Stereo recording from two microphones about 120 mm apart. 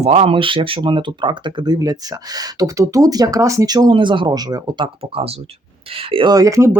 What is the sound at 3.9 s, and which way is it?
Speech, 45° right (ahead or behind).